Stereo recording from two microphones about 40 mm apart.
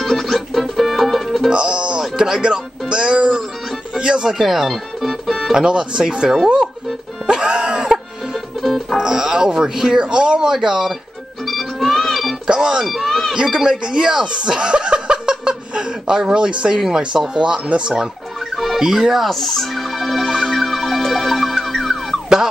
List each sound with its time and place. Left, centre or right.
0.0 s music: centre
1.5 s music: right
3.9 s speech: centre
4.4 s music: centre
5.5 s speech: centre
7.2 s music: right
8.9 s speech: centre
11.4 s music: centre
12.4 s speech: centre
12.8 s speech: centre
13.5 s speech: centre
17.4 s speech: right
18.6 s fowl: centre
18.9 s music: centre